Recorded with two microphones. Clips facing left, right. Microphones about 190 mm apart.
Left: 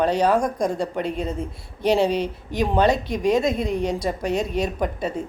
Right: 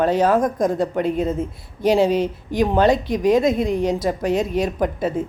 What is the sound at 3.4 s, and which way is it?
Speech, 50° right (ahead or behind).